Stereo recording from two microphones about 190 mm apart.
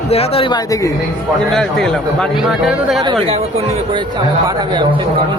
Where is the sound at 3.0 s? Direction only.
25° right (ahead or behind).